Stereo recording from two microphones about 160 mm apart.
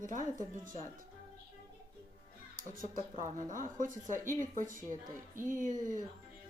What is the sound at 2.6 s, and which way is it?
Speech, 55° right (ahead or behind).